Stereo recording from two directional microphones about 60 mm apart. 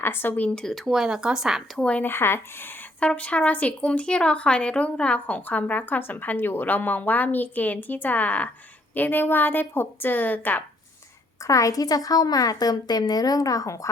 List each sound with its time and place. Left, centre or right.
0.0 s a woman's voice: left
0.5 s speech: centre
0.9 s speech: centre
1.8 s a woman's voice: left
2.0 s a woman's voice: left
3.0 s a woman's voice: left
11.4 s a woman's voice: left